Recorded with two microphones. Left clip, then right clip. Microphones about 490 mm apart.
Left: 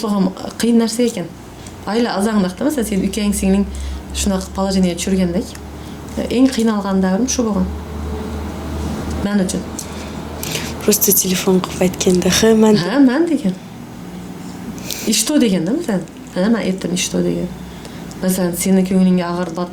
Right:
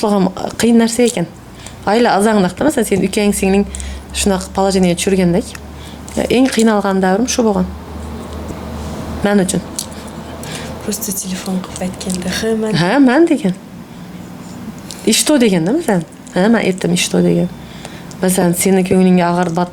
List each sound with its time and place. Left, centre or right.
0.0 s a woman's voice: right
9.2 s a woman's voice: right
10.4 s speech: left
12.7 s a woman's voice: right
15.0 s a woman's voice: right